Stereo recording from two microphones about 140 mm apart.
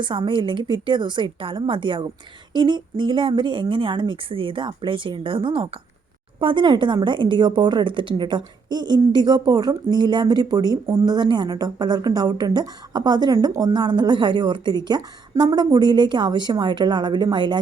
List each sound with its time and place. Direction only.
0.0 s a woman's voice: 35° right (ahead or behind)